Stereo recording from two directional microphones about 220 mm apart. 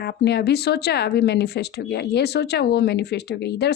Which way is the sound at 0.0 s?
50° left (ahead or behind).